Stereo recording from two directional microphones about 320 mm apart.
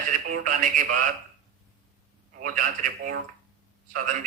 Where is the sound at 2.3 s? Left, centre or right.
Right.